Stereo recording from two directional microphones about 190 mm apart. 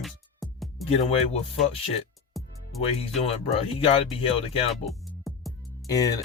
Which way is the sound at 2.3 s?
Centre (ahead or behind).